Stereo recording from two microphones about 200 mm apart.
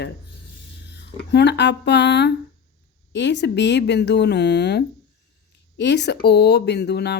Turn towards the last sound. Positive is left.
turn(degrees=55)  # may be behind; listen again after turning